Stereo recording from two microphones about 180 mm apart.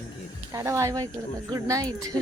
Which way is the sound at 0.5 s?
15° right (ahead or behind).